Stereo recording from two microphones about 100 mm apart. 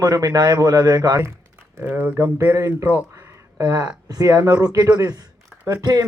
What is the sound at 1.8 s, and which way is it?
Speech, 20° right (ahead or behind).